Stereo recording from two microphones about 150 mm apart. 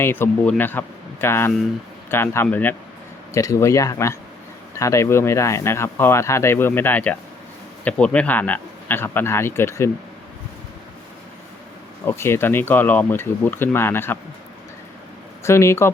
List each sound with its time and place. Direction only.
0.0 s speech: 15° left (ahead or behind)
12.0 s speech: 15° left (ahead or behind)
15.4 s speech: 20° left (ahead or behind)